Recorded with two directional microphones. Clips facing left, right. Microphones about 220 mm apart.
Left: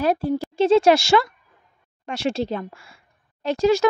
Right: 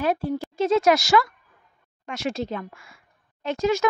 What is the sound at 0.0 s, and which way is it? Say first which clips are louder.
Speech: left 3 dB; 35° left (ahead or behind).